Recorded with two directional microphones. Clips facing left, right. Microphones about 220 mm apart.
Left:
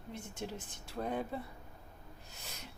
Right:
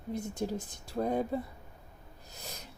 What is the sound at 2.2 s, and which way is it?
Snort, 40° right (ahead or behind).